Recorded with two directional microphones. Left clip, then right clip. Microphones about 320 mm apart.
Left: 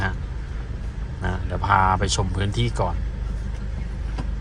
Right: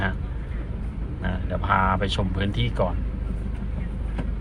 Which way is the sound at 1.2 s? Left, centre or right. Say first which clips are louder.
Left 3 dB; centre.